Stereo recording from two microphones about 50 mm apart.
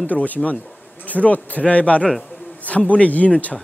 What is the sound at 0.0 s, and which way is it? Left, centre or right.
Speech, left.